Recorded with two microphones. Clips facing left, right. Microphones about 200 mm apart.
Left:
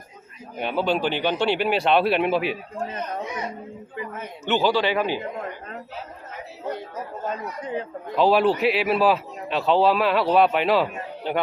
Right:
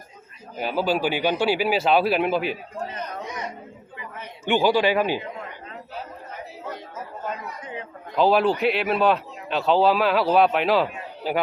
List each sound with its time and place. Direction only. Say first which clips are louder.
0.5 s a man's voice: even; 5° right (ahead or behind)
3.9 s a woman's voice: left 6 dB; 45° left (ahead or behind)
4.4 s speech: right 2 dB; 15° right (ahead or behind)
8.1 s a man's voice: left 1 dB; centre (ahead or behind)